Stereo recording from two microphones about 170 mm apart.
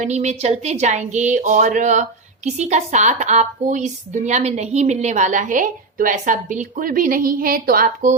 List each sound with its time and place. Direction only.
0.0 s speech: 40° right (ahead or behind)